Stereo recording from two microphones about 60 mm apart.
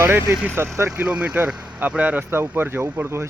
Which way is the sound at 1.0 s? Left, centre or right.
Right.